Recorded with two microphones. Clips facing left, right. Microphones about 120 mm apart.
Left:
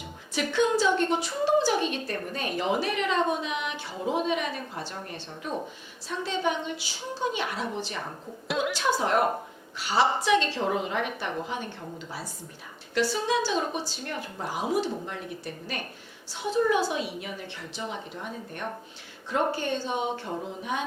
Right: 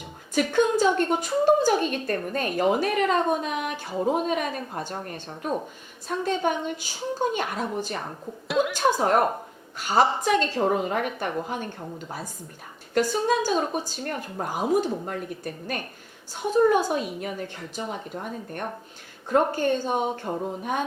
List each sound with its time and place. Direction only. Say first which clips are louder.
0.3 s a woman's voice: right 3 dB; 45° right (ahead or behind)
8.4 s a woman's voice: right 4 dB; centre (ahead or behind)
8.7 s a woman's voice: right 3 dB; 45° right (ahead or behind)